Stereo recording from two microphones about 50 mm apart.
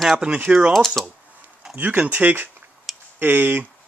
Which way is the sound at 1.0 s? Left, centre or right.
Centre.